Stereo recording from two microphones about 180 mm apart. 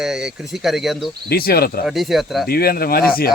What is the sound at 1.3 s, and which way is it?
Speech, 60° left (ahead or behind).